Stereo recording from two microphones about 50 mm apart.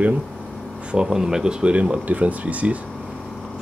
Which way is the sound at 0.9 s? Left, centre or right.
Centre.